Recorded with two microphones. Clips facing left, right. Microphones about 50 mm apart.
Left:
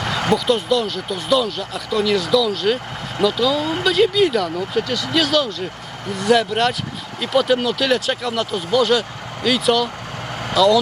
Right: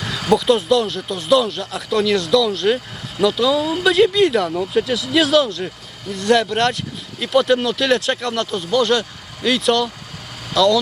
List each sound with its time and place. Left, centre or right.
0.3 s speech: centre
10.5 s speech: centre